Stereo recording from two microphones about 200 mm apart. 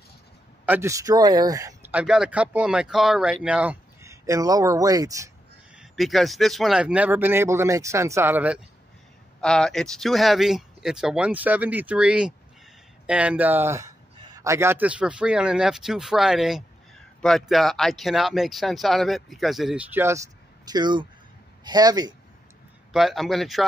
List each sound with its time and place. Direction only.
0.7 s speech: 15° right (ahead or behind)
5.8 s speech: centre (ahead or behind)
9.4 s a man's voice: 5° left (ahead or behind); by 22.1 s 20° right (ahead or behind)
22.9 s speech: centre (ahead or behind)